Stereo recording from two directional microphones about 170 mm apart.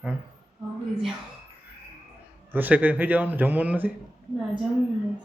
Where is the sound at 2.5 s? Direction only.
10° right (ahead or behind).